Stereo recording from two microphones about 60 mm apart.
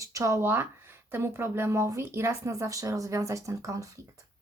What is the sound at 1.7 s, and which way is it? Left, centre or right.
Speech, right.